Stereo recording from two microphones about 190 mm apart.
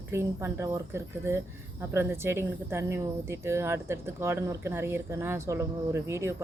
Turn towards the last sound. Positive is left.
turn(degrees=-15)  # may be behind; listen again after turning